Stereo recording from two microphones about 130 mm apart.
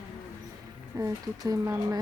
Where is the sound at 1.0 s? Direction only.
25° right (ahead or behind).